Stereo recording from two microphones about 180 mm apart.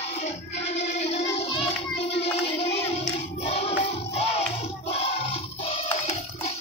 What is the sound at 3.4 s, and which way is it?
Music, 35° left (ahead or behind).